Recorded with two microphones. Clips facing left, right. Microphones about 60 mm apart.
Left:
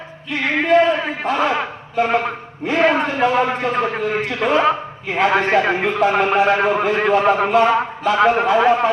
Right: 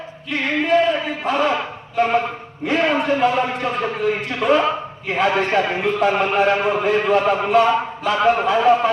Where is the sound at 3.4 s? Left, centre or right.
Left.